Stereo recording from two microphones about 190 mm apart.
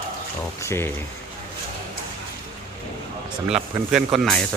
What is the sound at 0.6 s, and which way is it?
Speech, 15° left (ahead or behind).